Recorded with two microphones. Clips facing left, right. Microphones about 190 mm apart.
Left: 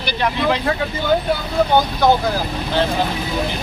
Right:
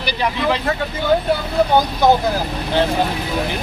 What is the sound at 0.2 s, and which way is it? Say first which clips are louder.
Speech: left 1 dB; centre (ahead or behind).